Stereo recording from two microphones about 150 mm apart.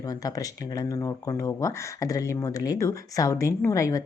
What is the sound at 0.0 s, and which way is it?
Speech, 25° left (ahead or behind).